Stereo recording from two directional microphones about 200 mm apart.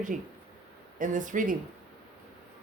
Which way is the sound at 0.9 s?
40° right (ahead or behind).